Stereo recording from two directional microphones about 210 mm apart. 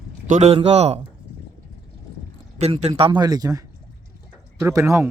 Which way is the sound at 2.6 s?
30° right (ahead or behind).